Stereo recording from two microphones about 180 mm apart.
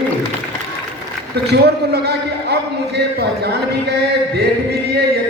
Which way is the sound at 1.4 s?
65° right (ahead or behind).